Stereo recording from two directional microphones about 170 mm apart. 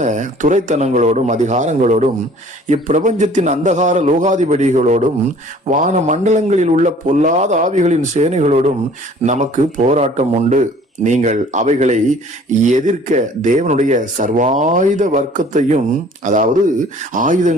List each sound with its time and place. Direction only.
0.0 s speech: 45° right (ahead or behind)